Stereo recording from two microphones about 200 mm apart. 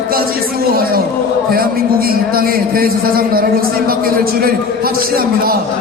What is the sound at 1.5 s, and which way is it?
A man's voice, 50° right (ahead or behind).